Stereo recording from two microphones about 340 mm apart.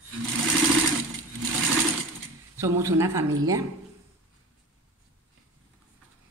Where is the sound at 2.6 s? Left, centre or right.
Centre.